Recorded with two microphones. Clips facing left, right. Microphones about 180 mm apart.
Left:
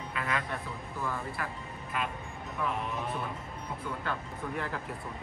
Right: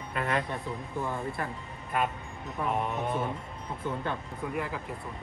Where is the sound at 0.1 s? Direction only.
45° right (ahead or behind).